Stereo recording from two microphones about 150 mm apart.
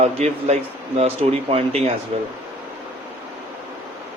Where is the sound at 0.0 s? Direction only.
45° right (ahead or behind).